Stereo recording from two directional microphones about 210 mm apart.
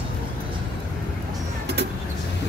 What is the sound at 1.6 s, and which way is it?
Vehicle, 50° right (ahead or behind).